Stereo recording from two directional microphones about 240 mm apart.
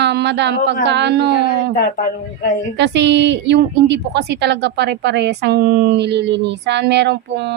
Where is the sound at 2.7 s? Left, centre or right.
Right.